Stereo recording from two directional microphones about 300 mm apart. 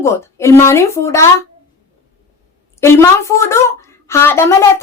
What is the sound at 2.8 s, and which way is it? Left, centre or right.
A woman's voice, centre.